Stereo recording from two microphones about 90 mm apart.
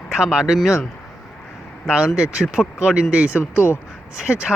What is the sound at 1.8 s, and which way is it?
Speech, 10° right (ahead or behind).